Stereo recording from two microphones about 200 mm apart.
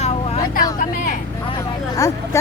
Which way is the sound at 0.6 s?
45° left (ahead or behind).